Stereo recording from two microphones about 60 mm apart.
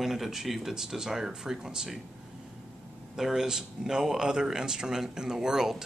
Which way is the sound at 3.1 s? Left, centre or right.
Centre.